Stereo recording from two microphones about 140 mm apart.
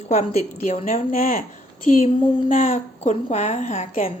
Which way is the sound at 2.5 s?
65° left (ahead or behind).